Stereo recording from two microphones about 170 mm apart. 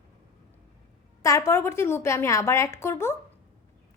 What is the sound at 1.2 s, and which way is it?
A woman's voice, 20° left (ahead or behind).